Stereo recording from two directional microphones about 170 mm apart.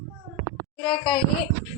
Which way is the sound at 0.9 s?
30° left (ahead or behind).